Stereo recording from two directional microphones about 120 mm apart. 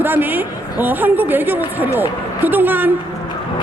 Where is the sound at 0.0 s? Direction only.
15° right (ahead or behind).